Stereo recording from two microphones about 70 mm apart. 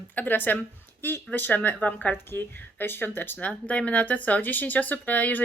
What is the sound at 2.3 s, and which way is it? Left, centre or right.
A woman's voice, left.